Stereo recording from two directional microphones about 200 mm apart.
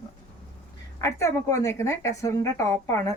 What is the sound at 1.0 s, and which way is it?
A woman's voice, 15° left (ahead or behind).